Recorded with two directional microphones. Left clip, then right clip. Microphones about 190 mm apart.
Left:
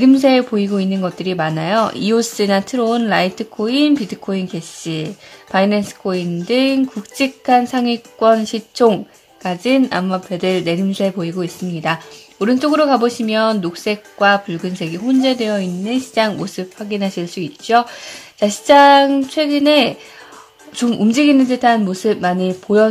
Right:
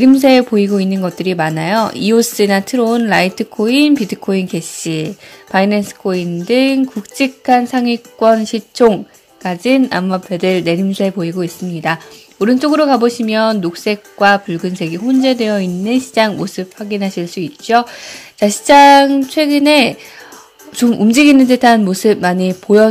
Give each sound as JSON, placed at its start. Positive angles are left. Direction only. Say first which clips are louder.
{"t": 0.0, "sound": "speech", "louder": "right 3 dB", "side_deg": -10}